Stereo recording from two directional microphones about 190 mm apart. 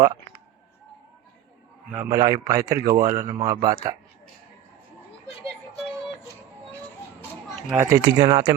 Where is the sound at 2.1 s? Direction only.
15° right (ahead or behind).